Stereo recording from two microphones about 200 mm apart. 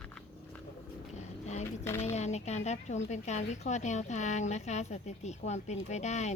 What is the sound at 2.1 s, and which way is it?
A woman's voice, 35° left (ahead or behind).